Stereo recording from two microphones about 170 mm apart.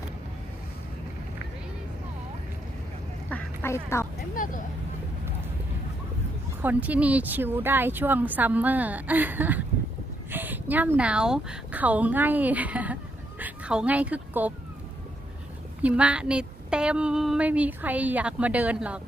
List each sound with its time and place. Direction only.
3.2 s quack: 10° left (ahead or behind)
4.4 s vehicle: 50° left (ahead or behind)
6.6 s a woman's voice: 10° right (ahead or behind)
15.8 s a woman's voice: 10° right (ahead or behind)